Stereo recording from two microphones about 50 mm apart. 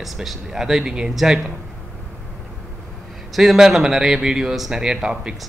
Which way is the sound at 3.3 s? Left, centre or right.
Centre.